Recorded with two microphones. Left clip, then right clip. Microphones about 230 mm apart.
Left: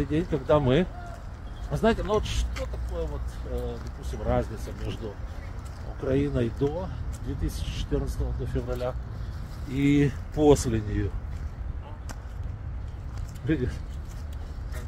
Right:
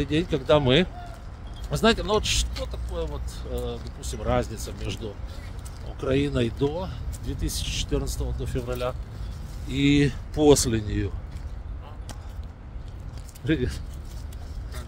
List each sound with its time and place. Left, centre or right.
0.0 s speech: centre
13.5 s speech: centre